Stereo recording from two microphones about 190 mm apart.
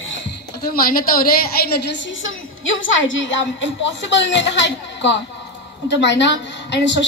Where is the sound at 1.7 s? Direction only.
65° left (ahead or behind).